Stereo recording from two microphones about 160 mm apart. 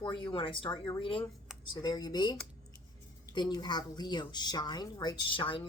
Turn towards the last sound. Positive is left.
turn(degrees=30)  # may be behind; listen again after turning